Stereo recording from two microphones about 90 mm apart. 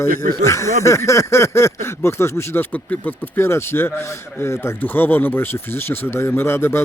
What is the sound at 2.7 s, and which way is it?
Speech, 20° left (ahead or behind).